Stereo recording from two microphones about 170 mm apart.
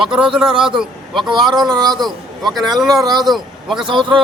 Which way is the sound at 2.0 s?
Centre (ahead or behind).